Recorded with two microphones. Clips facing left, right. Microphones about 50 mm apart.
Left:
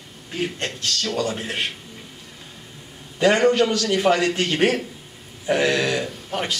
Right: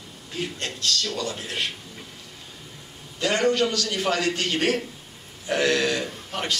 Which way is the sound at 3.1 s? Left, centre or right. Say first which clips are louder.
Left 5 dB; left.